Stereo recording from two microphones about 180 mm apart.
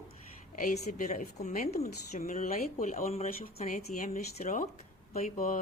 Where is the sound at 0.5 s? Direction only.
45° left (ahead or behind).